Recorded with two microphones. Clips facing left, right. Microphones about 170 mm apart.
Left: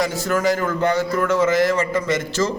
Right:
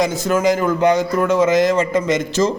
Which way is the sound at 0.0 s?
20° right (ahead or behind).